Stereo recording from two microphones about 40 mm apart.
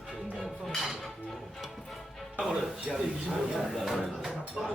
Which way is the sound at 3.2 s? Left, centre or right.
Centre.